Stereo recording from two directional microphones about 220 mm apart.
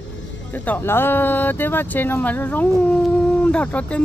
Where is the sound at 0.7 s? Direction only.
10° left (ahead or behind).